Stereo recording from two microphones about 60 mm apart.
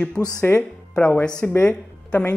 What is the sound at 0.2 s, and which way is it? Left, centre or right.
Speech, centre.